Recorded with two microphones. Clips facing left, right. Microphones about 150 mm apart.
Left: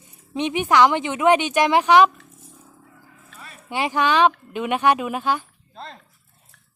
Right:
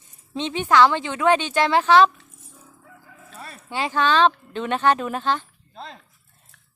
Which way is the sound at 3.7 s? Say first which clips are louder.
Left 1 dB; 15° left (ahead or behind).